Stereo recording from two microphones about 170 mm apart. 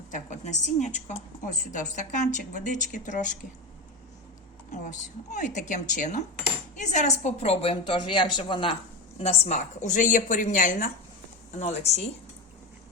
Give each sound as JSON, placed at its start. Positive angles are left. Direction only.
{"t": 0.1, "sound": "a woman's voice", "side_deg": 45}
{"t": 4.7, "sound": "a sound", "side_deg": 45}
{"t": 5.3, "sound": "a woman's voice", "side_deg": 45}